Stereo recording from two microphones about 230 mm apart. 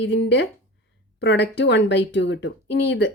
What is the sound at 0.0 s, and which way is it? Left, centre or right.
A woman's voice, left.